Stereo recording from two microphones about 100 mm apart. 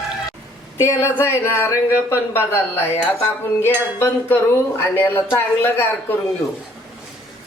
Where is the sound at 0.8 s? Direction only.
25° left (ahead or behind).